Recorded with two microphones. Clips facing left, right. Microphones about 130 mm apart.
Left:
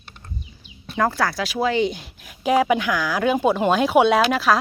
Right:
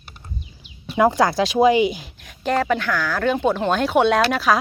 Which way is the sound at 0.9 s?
15° right (ahead or behind).